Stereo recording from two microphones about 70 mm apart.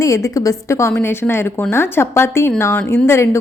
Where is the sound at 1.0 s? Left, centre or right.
Left.